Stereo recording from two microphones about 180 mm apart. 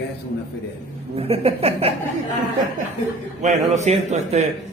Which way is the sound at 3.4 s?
40° right (ahead or behind).